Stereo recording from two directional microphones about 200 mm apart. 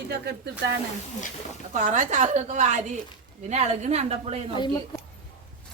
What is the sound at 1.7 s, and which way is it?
A woman's voice, 35° right (ahead or behind).